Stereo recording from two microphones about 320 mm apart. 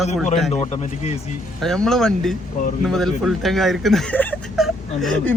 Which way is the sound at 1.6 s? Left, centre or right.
Centre.